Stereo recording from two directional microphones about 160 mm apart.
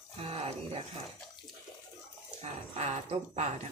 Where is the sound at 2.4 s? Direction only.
40° right (ahead or behind).